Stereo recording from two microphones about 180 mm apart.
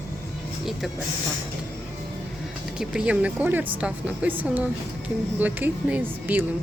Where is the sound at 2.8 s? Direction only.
5° right (ahead or behind).